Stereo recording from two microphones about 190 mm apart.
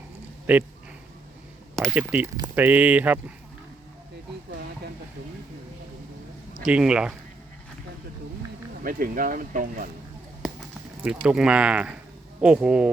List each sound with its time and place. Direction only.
0.5 s speech: 5° right (ahead or behind)
1.7 s speech: centre (ahead or behind)
6.7 s speech: 5° right (ahead or behind)
8.8 s speech: 50° right (ahead or behind)
11.0 s speech: 5° right (ahead or behind)